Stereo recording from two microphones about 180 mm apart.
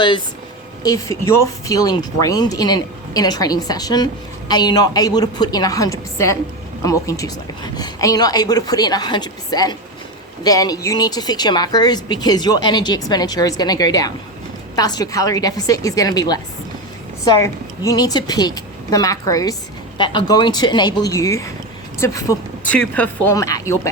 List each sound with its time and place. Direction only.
0.8 s speech: 20° left (ahead or behind)
23.3 s speech: 20° left (ahead or behind)